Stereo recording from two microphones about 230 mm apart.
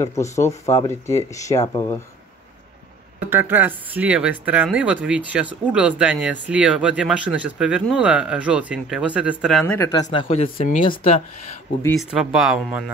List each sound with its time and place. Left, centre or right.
0.0 s speech: centre
3.3 s speech: centre
9.8 s speech: centre
10.2 s speech: left
12.0 s speech: centre